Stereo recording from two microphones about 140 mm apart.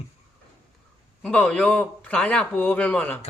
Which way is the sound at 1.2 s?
5° left (ahead or behind).